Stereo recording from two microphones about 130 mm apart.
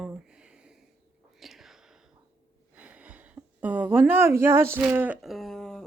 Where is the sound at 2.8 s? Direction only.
10° right (ahead or behind).